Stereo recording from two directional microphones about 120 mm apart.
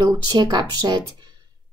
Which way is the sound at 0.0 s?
35° right (ahead or behind).